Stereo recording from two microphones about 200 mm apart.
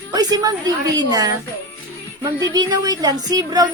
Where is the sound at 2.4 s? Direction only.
20° right (ahead or behind).